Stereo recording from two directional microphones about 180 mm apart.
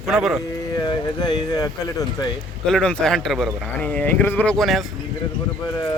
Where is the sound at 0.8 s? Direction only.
25° left (ahead or behind).